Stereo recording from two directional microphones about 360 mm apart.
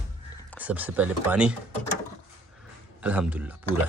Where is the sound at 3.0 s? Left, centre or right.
Centre.